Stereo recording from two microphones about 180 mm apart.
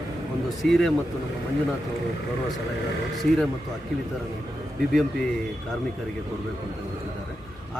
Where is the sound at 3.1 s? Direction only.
Centre (ahead or behind).